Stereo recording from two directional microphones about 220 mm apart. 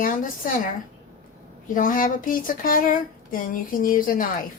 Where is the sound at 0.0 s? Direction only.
35° left (ahead or behind).